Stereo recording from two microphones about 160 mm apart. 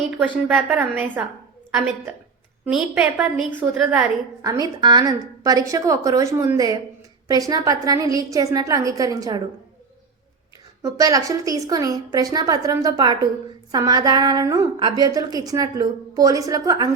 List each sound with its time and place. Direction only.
0.2 s a woman's voice: 5° right (ahead or behind)
2.6 s a woman's voice: 5° right (ahead or behind)
4.4 s a woman's voice: 25° right (ahead or behind)
10.8 s a woman's voice: 20° right (ahead or behind)